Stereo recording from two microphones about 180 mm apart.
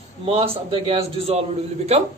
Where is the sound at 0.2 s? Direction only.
30° right (ahead or behind).